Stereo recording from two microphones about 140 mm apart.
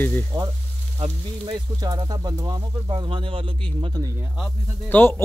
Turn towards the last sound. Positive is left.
turn(degrees=15)  # may be behind; listen again after turning